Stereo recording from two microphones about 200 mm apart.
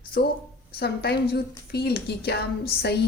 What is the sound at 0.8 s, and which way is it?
A woman's voice, 55° left (ahead or behind).